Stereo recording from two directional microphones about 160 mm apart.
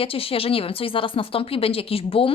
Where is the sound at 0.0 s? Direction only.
35° left (ahead or behind).